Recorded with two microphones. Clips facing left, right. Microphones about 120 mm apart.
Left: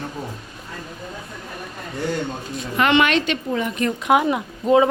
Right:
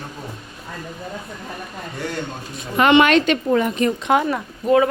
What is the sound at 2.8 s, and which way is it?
Speech, 20° right (ahead or behind).